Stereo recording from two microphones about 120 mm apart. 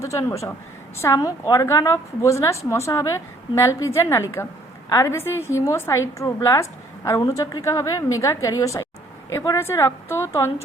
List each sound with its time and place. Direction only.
0.0 s a woman's voice: 25° left (ahead or behind)